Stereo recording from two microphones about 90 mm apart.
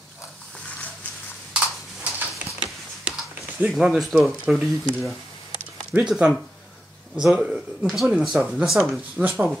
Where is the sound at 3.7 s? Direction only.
Centre (ahead or behind).